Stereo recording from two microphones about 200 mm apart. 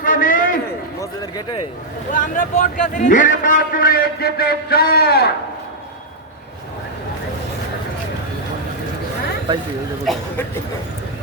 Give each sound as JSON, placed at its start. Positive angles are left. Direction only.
{"t": 0.0, "sound": "a sound", "side_deg": 40}
{"t": 1.2, "sound": "speech", "side_deg": 20}
{"t": 2.1, "sound": "a man's voice", "side_deg": 40}